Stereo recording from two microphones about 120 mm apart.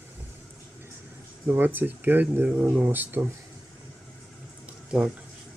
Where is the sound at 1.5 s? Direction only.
15° right (ahead or behind).